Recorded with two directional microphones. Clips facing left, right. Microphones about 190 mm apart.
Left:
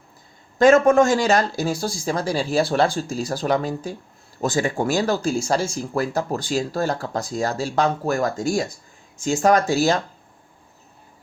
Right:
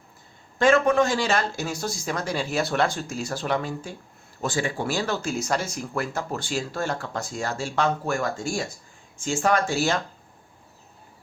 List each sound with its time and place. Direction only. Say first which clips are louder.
0.6 s speech: left 5 dB; 45° left (ahead or behind)